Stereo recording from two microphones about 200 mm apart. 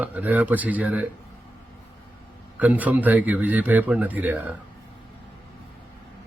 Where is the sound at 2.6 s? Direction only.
5° right (ahead or behind).